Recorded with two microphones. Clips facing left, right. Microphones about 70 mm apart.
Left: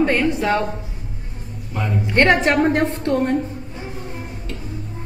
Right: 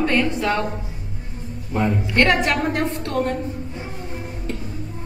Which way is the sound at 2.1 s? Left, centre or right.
Left.